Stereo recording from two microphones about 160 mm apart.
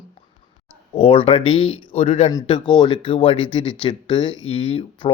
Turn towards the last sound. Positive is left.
turn(degrees=35)  # may be behind; listen again after turning